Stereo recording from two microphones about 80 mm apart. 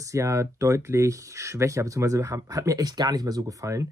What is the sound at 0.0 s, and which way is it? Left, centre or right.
Speech, right.